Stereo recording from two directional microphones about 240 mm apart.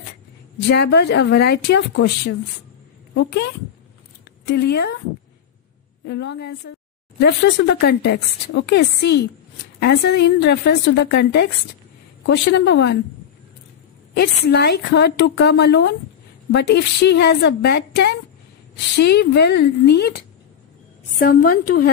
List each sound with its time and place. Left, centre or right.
0.7 s speech: left
4.5 s a woman's voice: left
6.0 s speech: left
14.1 s speech: left
21.2 s a woman's voice: left